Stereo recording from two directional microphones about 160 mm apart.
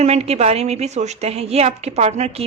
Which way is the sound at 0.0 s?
40° right (ahead or behind).